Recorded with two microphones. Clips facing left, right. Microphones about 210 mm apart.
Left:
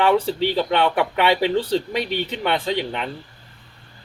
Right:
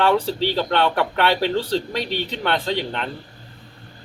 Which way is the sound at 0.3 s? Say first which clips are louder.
Left 1 dB; 55° left (ahead or behind).